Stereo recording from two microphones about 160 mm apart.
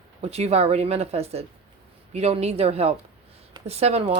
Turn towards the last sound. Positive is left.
turn(degrees=-40)  # may be behind; listen again after turning